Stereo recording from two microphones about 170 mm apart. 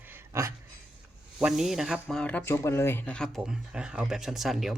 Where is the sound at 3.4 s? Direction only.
5° right (ahead or behind).